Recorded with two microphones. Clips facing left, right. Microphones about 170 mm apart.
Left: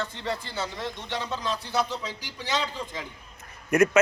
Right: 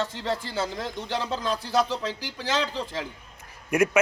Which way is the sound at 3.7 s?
10° right (ahead or behind).